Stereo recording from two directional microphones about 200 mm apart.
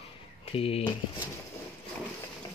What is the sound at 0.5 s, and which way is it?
Speech, 30° left (ahead or behind).